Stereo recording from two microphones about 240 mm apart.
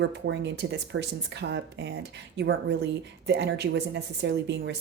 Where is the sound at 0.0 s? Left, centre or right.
Right.